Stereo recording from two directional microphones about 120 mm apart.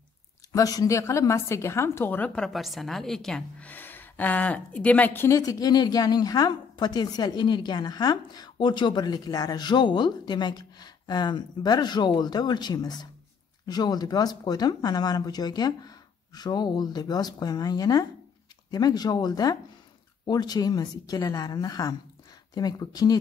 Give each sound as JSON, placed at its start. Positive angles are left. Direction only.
{"t": 0.5, "sound": "a woman's voice", "side_deg": 30}